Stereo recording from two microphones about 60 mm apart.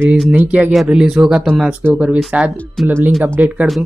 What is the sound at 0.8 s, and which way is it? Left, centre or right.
Speech, centre.